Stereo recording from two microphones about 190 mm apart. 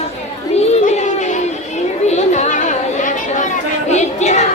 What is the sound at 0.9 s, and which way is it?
Chatter, 40° left (ahead or behind).